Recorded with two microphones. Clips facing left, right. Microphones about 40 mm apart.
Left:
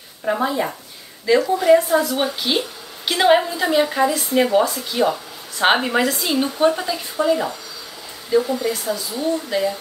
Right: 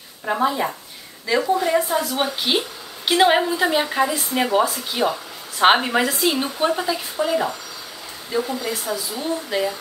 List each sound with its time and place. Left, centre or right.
0.2 s speech: centre
2.5 s a woman's voice: centre